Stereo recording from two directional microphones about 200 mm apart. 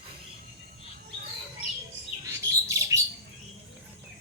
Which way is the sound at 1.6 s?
30° left (ahead or behind).